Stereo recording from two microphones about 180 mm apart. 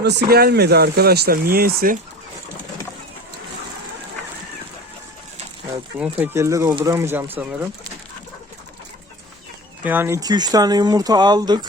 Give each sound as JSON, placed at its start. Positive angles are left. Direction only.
{"t": 0.0, "sound": "speech", "side_deg": -70}
{"t": 6.0, "sound": "speech", "side_deg": -10}
{"t": 9.8, "sound": "speech", "side_deg": -10}